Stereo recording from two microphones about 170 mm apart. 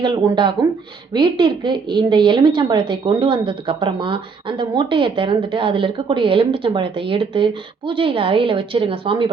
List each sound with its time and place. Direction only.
0.0 s a woman's voice: 25° right (ahead or behind)